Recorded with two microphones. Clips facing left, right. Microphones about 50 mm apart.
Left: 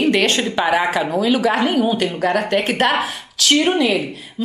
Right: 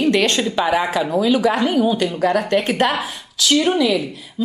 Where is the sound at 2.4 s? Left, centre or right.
Centre.